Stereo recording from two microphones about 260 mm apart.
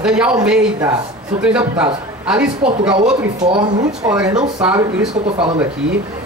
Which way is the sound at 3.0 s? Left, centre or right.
Right.